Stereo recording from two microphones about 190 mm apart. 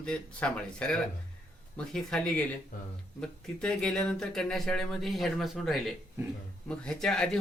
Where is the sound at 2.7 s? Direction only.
45° left (ahead or behind).